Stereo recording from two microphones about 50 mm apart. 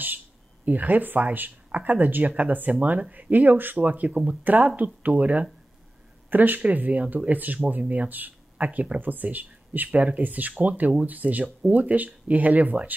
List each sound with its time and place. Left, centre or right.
0.7 s speech: right
9.0 s speech: right